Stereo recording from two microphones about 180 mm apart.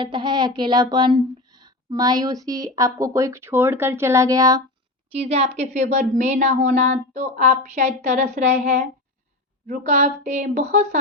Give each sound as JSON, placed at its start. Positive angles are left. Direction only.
{"t": 0.0, "sound": "speech", "side_deg": -25}
{"t": 5.0, "sound": "a woman's voice", "side_deg": -35}